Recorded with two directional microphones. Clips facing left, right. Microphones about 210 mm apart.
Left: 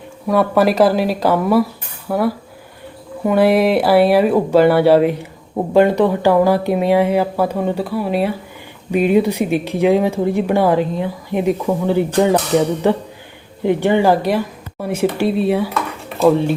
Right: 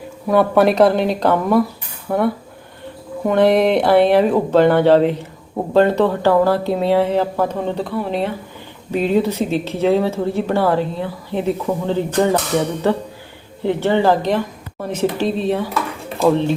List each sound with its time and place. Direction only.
0.3 s speech: centre (ahead or behind)